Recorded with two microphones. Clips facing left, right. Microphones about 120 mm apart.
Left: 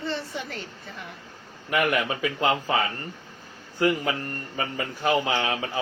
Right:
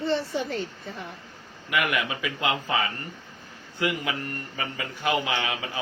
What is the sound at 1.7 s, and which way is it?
A man's voice, 40° left (ahead or behind).